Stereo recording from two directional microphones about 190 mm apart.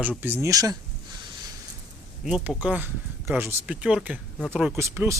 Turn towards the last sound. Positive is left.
turn(degrees=-15)  # may be behind; listen again after turning